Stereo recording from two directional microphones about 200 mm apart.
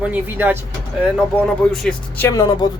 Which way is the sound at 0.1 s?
10° right (ahead or behind).